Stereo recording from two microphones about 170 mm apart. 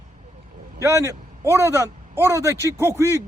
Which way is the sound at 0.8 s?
20° right (ahead or behind).